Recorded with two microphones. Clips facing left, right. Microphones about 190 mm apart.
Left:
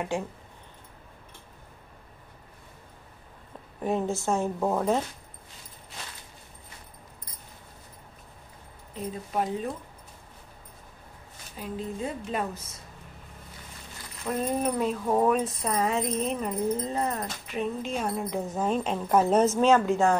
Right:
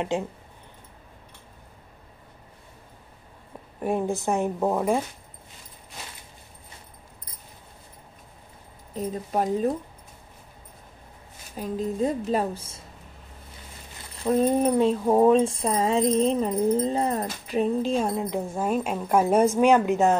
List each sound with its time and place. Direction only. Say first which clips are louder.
0.1 s speech: right 2 dB; 20° right (ahead or behind)
3.8 s a woman's voice: right 2 dB; 10° right (ahead or behind)
8.9 s speech: right 4 dB; 40° right (ahead or behind)
11.5 s speech: right 6 dB; 40° right (ahead or behind)
14.1 s speech: right 7 dB; 25° right (ahead or behind)
18.1 s a woman's voice: right 2 dB; 15° right (ahead or behind)